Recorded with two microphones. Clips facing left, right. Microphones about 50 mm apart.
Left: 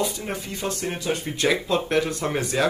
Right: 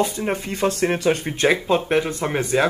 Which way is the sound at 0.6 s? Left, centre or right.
Right.